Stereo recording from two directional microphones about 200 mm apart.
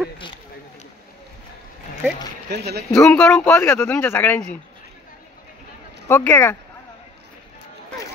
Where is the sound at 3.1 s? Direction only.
5° left (ahead or behind).